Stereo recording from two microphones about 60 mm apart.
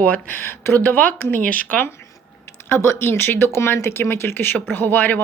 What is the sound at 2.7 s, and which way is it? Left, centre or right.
Speech, left.